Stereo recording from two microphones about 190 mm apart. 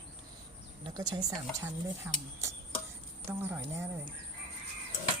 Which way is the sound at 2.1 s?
10° right (ahead or behind).